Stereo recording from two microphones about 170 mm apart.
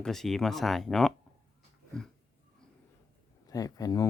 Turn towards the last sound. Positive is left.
turn(degrees=20)  # may be behind; listen again after turning